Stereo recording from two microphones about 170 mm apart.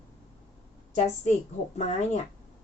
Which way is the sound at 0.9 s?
45° left (ahead or behind).